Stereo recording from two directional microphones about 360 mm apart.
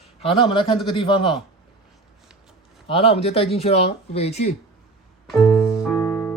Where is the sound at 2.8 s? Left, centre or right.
Centre.